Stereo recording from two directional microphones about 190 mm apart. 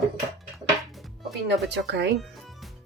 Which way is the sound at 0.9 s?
Centre (ahead or behind).